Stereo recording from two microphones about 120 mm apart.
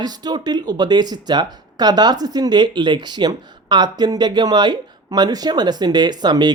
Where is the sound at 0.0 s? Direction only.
35° right (ahead or behind).